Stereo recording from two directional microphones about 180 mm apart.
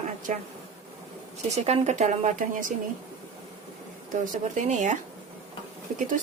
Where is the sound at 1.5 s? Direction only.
35° right (ahead or behind).